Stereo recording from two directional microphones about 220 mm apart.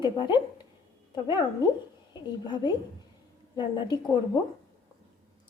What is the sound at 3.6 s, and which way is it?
Speech, 20° left (ahead or behind).